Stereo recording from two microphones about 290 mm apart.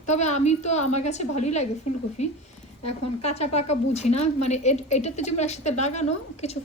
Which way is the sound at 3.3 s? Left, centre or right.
Left.